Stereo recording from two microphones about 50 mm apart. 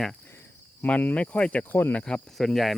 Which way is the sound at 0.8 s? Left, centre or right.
Left.